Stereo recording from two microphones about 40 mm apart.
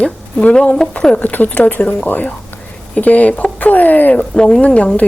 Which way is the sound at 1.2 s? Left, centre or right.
Left.